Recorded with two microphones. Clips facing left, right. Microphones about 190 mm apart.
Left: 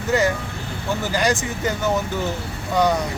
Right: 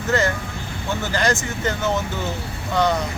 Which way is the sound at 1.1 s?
15° left (ahead or behind).